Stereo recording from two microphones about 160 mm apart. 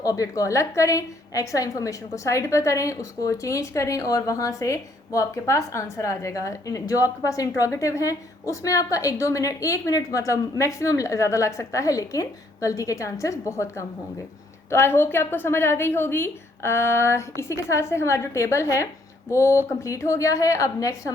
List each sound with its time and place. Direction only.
0.0 s a woman's voice: 20° left (ahead or behind)